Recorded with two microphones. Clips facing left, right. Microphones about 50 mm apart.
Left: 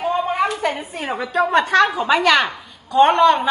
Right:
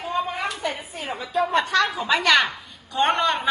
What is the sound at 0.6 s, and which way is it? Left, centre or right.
Speech, left.